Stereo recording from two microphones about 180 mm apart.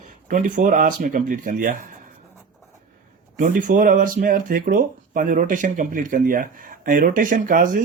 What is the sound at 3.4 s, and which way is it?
Speech, 45° right (ahead or behind).